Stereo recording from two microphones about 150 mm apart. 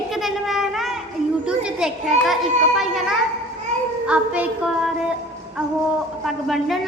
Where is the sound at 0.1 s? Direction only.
Centre (ahead or behind).